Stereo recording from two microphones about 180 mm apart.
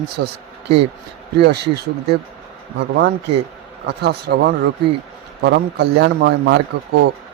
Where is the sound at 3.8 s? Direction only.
65° right (ahead or behind).